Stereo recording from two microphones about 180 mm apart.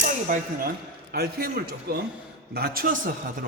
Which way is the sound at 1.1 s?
60° right (ahead or behind).